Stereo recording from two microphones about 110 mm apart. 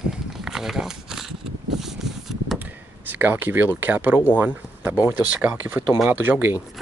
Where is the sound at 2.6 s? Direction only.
15° right (ahead or behind).